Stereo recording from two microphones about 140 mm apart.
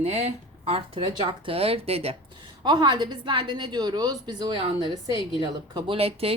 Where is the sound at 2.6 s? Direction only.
35° right (ahead or behind).